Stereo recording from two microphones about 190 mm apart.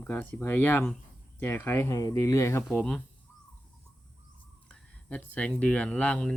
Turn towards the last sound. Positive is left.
turn(degrees=5)  # may be behind; listen again after turning